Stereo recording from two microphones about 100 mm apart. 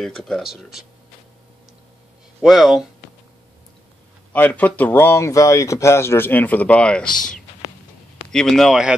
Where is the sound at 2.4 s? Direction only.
Centre (ahead or behind).